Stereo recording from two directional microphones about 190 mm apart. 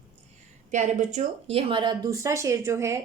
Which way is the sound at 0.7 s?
40° right (ahead or behind).